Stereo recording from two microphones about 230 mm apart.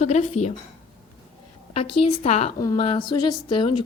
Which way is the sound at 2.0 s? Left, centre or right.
Left.